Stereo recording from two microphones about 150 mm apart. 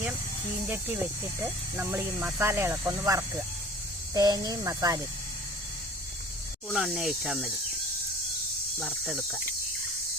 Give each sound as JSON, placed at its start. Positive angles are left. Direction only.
{"t": 0.7, "sound": "speech", "side_deg": -10}
{"t": 6.7, "sound": "speech", "side_deg": -5}